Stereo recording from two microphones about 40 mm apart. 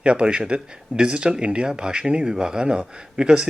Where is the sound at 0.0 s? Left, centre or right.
Right.